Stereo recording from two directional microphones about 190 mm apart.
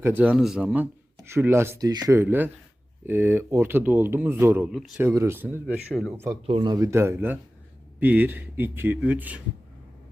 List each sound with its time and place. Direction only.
0.0 s speech: 10° right (ahead or behind)
5.9 s speech: centre (ahead or behind)
6.4 s speech: 25° right (ahead or behind); by 9.4 s 10° right (ahead or behind)